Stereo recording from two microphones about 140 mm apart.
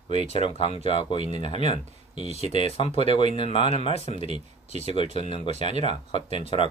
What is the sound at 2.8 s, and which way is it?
Speech, 45° left (ahead or behind).